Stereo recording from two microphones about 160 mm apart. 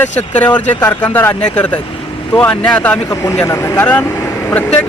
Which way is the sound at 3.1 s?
20° left (ahead or behind).